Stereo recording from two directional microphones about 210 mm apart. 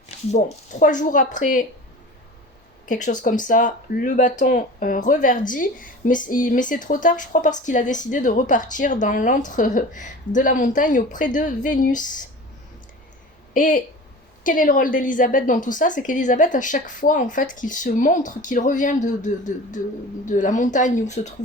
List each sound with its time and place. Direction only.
0.3 s a woman's voice: 30° left (ahead or behind)
2.8 s a woman's voice: 40° left (ahead or behind)
13.5 s a woman's voice: 40° left (ahead or behind)